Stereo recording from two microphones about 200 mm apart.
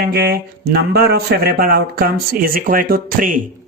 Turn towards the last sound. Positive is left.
turn(degrees=-45)  # may be behind; listen again after turning